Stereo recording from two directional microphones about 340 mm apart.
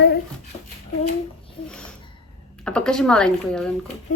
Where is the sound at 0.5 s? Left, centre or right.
Centre.